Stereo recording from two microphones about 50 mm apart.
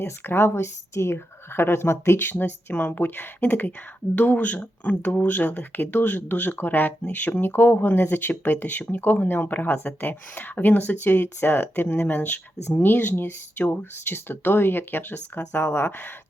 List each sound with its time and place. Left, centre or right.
0.0 s speech: left
2.4 s speech: left